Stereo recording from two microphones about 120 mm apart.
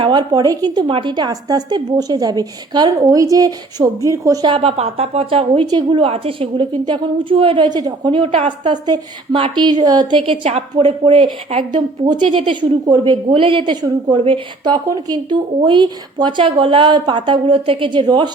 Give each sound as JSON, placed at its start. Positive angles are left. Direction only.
{"t": 0.0, "sound": "a woman's voice", "side_deg": -35}
{"t": 4.4, "sound": "a woman's voice", "side_deg": -50}
{"t": 13.3, "sound": "a woman's voice", "side_deg": -45}